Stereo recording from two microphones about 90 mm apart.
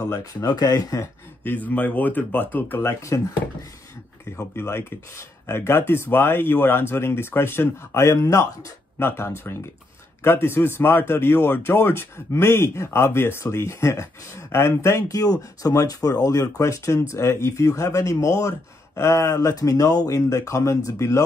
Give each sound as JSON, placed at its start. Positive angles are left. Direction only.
{"t": 0.1, "sound": "speech", "side_deg": 45}
{"t": 1.4, "sound": "speech", "side_deg": 20}
{"t": 4.4, "sound": "speech", "side_deg": 25}